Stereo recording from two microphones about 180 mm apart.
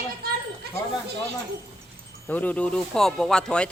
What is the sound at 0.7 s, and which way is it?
Chatter, 60° right (ahead or behind).